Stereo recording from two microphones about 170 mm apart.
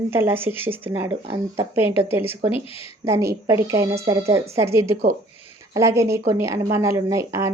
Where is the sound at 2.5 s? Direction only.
35° left (ahead or behind).